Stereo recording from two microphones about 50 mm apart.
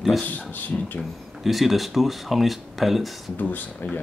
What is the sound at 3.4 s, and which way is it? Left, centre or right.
Speech, left.